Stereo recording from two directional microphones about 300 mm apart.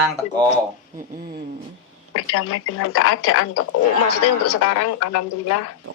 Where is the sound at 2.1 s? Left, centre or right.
Left.